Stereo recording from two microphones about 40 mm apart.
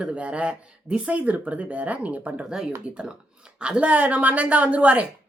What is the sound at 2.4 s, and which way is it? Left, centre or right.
Speech, centre.